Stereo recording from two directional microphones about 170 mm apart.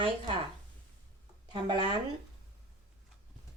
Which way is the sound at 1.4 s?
25° right (ahead or behind).